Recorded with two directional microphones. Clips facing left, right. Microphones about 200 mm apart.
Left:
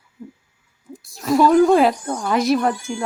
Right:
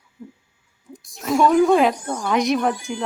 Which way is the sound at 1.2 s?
Centre (ahead or behind).